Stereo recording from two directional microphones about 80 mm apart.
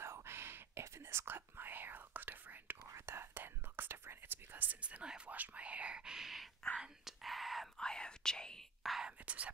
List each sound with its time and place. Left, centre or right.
0.0 s whispering: right; by 9.0 s centre
9.0 s whispering: centre